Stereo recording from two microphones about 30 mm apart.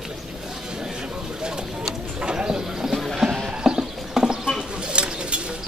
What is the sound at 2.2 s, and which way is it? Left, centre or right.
Bird, right.